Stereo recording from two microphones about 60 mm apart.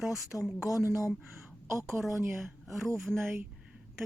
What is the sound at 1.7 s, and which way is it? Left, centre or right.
Speech, right.